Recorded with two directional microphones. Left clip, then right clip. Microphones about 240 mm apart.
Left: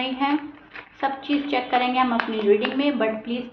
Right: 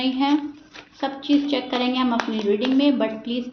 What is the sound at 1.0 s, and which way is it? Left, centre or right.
A woman's voice, right.